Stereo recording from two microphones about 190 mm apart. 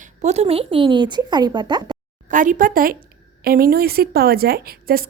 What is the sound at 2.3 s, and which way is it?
A woman's voice, 45° right (ahead or behind).